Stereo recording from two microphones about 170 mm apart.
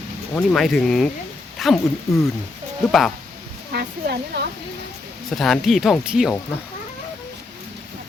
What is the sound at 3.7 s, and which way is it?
Speech, 70° right (ahead or behind).